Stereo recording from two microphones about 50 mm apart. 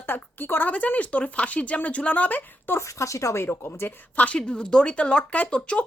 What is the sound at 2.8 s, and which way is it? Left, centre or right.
Speech, left.